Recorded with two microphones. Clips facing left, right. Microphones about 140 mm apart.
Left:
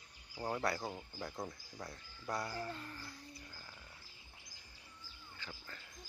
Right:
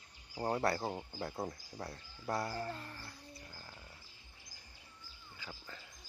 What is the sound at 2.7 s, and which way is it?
Speech, 5° right (ahead or behind).